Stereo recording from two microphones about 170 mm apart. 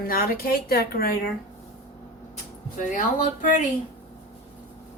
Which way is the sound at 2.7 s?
50° left (ahead or behind).